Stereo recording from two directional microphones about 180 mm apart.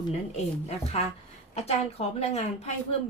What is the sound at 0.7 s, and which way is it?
Speech, 35° left (ahead or behind).